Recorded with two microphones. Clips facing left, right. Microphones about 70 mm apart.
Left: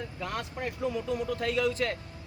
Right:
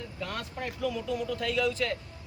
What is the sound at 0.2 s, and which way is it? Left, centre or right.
Speech, left.